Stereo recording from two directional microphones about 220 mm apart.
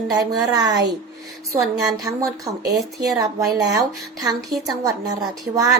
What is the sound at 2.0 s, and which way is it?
Speech, 15° right (ahead or behind).